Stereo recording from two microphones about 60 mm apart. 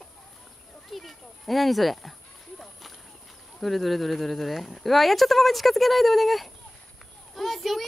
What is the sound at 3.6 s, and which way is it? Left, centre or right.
Speech, centre.